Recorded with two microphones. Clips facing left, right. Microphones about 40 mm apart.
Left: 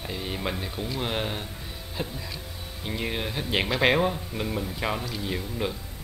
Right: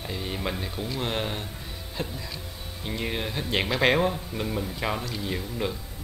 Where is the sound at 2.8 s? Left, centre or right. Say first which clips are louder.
Even; centre.